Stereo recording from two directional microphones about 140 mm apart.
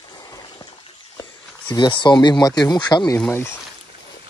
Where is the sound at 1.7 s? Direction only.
35° left (ahead or behind).